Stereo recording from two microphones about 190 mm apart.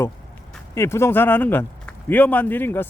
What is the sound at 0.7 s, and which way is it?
A man's voice, 15° left (ahead or behind).